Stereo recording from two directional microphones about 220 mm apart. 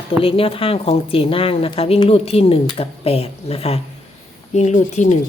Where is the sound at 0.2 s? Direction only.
25° left (ahead or behind).